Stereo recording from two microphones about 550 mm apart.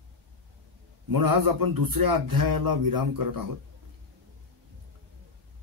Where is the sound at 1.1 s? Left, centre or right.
Right.